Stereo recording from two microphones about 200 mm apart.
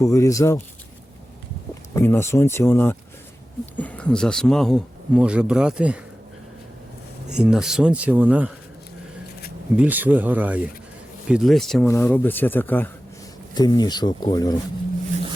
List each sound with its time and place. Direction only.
0.0 s speech: 15° left (ahead or behind)
1.9 s speech: 10° left (ahead or behind); by 6.0 s 5° right (ahead or behind)
7.3 s speech: 5° right (ahead or behind)
9.7 s speech: 10° right (ahead or behind)
11.9 s speech: 10° left (ahead or behind)
13.5 s speech: 20° left (ahead or behind)